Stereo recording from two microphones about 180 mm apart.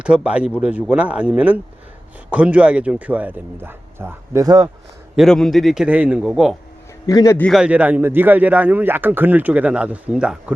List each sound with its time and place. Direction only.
0.0 s a man's voice: 5° right (ahead or behind)
5.1 s a man's voice: centre (ahead or behind)
7.1 s speech: 20° left (ahead or behind)
7.4 s a man's voice: 5° right (ahead or behind)